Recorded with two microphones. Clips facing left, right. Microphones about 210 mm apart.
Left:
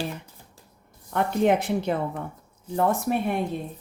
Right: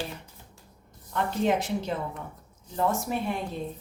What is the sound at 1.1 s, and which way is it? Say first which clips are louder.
A woman's voice: left 4 dB; 60° left (ahead or behind).